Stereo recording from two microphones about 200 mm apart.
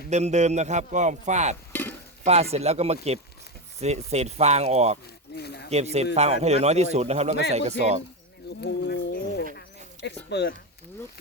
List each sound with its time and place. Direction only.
0.1 s a man's voice: 35° right (ahead or behind)
1.7 s stir: 10° left (ahead or behind)
2.2 s a man's voice: 30° right (ahead or behind)
5.3 s a sound: 55° left (ahead or behind)
5.7 s a man's voice: 30° right (ahead or behind)
8.6 s a sound: 60° left (ahead or behind)
10.2 s speech: 60° left (ahead or behind)